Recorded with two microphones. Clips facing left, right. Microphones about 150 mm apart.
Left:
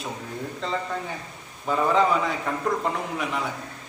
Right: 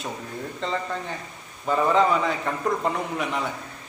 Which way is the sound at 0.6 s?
5° left (ahead or behind).